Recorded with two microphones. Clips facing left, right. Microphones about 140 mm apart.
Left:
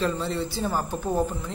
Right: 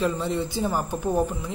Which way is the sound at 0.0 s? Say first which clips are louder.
Right 1 dB; 15° right (ahead or behind).